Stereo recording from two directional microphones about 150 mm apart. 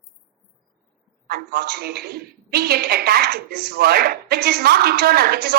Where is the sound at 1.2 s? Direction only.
90° right.